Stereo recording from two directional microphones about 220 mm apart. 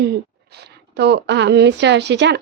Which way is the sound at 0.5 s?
50° right (ahead or behind).